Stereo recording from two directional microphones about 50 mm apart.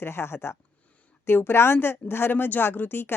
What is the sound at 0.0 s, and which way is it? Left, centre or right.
A woman's voice, left.